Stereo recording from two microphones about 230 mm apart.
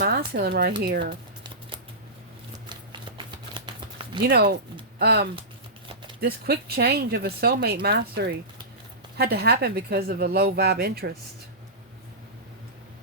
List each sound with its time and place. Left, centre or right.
0.0 s a sound: right
0.8 s speech: right
2.6 s shuffling cards: centre
4.2 s speech: right